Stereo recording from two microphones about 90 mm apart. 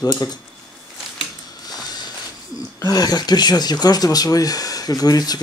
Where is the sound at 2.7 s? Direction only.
45° left (ahead or behind).